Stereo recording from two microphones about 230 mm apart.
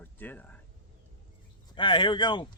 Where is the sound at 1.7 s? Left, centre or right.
Left.